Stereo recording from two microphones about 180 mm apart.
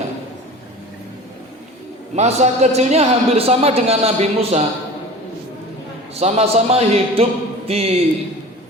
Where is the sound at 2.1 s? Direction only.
40° right (ahead or behind).